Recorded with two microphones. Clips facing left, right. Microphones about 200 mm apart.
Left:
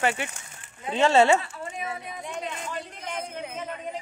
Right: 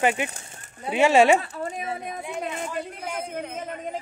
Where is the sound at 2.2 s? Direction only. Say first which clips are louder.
Right 2 dB; 5° right (ahead or behind).